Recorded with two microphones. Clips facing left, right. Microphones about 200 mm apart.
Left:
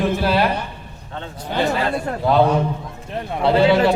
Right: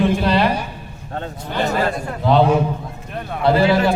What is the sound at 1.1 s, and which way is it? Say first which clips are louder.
Speech: even; 45° right (ahead or behind).